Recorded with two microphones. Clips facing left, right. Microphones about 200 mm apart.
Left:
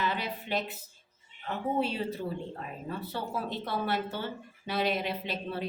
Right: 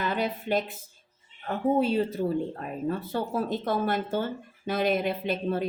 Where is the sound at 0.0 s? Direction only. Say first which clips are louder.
Right 4 dB; 45° right (ahead or behind).